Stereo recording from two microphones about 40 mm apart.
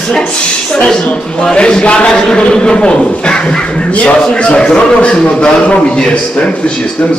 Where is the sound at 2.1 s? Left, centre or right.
Centre.